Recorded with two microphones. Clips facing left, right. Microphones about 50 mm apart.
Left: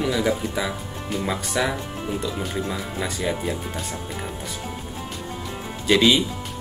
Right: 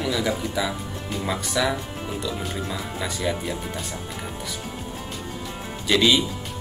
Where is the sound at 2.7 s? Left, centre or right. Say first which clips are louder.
Left 1 dB; centre.